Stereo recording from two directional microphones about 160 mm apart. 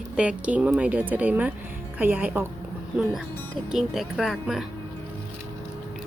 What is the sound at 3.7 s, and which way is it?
Speech, centre (ahead or behind).